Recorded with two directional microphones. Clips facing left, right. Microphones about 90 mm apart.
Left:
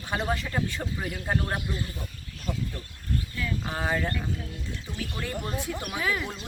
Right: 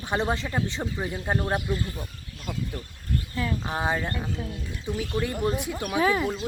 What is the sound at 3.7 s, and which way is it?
Speech, 15° right (ahead or behind).